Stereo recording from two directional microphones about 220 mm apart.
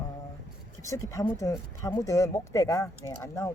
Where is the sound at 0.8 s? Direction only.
15° left (ahead or behind).